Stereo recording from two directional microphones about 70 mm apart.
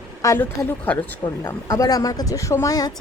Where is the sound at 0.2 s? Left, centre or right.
Left.